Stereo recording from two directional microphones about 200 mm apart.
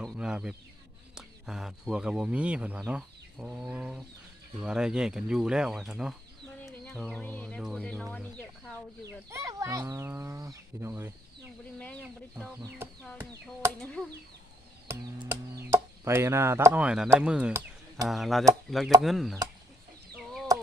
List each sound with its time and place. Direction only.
0.0 s a sound: 5° right (ahead or behind)
1.1 s speech: centre (ahead or behind)
9.3 s speech: 15° right (ahead or behind)
14.8 s speech: 10° right (ahead or behind)
20.1 s chicken: centre (ahead or behind)